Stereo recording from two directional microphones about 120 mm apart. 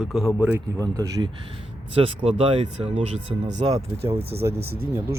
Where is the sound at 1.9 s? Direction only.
50° right (ahead or behind).